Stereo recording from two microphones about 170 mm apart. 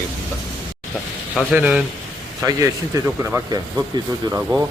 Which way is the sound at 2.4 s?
20° right (ahead or behind).